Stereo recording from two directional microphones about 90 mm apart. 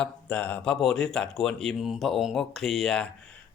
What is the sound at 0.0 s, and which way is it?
Speech, 15° left (ahead or behind).